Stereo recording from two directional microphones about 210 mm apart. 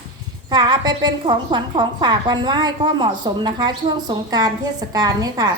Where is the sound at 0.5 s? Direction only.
20° right (ahead or behind).